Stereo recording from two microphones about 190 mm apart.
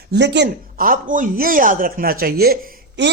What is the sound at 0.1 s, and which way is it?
A man's voice, 65° right (ahead or behind).